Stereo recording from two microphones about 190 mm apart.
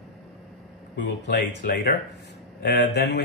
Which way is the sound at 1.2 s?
55° left (ahead or behind).